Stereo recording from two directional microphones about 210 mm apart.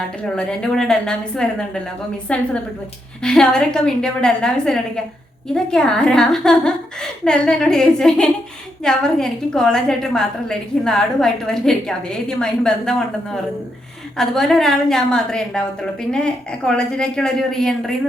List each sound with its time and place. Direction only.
0.3 s a woman's voice: 5° left (ahead or behind)
14.2 s a woman's voice: centre (ahead or behind)